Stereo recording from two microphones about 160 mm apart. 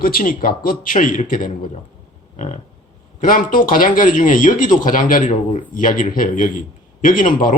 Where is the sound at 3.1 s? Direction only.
60° left (ahead or behind).